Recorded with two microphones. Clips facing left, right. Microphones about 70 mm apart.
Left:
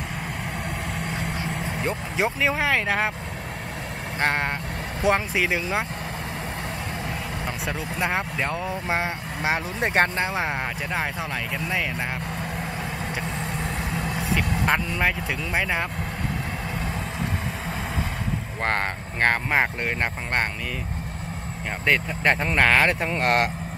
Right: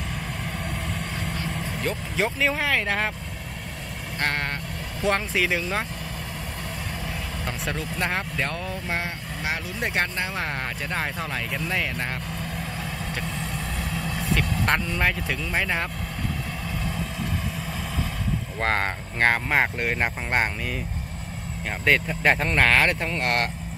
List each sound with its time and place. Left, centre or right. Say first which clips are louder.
1.2 s vehicle: left 2 dB; centre
4.2 s speech: left 3 dB; left
8.0 s speech: left 2 dB; centre
11.5 s speech: even; centre
13.4 s vehicle: left 2 dB; left
14.1 s vehicle: even; centre
14.6 s speech: left 1 dB; centre
18.6 s speech: right 1 dB; centre
21.8 s speech: right 1 dB; centre; by 23.5 s left